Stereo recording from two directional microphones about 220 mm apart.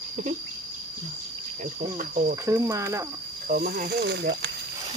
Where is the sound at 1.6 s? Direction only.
35° right (ahead or behind).